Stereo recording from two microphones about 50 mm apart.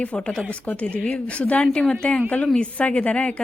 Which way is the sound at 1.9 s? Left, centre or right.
Left.